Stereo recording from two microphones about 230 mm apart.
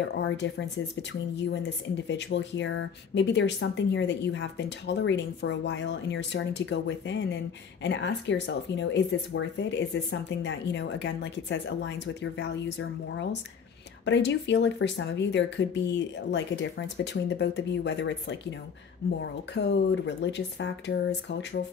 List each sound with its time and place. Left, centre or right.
0.2 s speech: left
19.5 s speech: left